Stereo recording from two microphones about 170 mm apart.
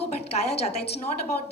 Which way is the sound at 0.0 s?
40° left (ahead or behind).